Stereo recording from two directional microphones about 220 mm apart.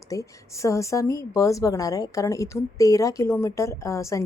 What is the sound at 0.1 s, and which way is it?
A woman's voice, 15° left (ahead or behind).